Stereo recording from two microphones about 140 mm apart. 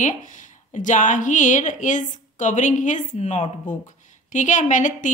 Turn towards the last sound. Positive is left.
turn(degrees=65)  # may be behind; listen again after turning